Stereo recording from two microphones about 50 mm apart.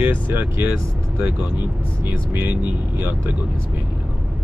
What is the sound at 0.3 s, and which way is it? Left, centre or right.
Speech, right.